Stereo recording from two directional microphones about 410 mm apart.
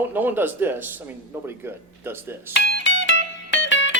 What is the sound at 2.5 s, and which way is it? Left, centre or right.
Music, left.